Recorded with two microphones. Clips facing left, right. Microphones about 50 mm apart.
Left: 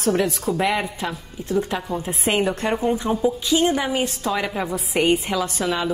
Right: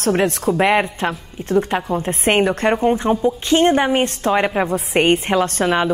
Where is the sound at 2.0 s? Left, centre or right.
Right.